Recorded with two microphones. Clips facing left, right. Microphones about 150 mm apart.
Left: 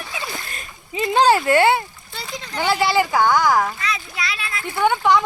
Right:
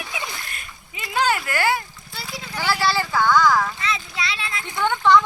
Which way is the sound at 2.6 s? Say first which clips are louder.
Left 4 dB; 20° left (ahead or behind).